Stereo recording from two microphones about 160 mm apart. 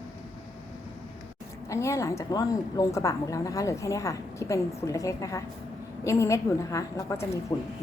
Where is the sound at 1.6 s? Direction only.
20° left (ahead or behind).